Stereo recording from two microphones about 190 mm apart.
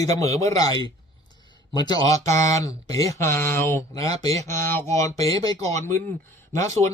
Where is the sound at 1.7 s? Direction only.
20° left (ahead or behind).